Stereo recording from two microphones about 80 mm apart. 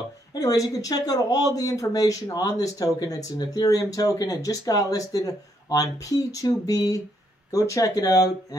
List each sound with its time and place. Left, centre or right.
0.3 s speech: left